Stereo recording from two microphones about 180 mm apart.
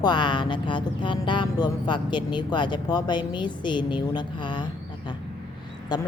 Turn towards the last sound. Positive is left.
turn(degrees=25)  # may be behind; listen again after turning